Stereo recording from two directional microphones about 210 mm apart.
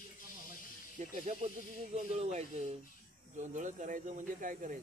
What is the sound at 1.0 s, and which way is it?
Speech, 35° right (ahead or behind).